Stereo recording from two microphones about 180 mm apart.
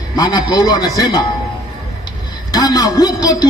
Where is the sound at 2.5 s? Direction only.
20° left (ahead or behind).